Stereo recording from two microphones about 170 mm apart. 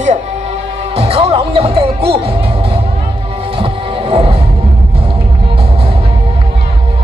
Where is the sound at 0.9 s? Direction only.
35° right (ahead or behind).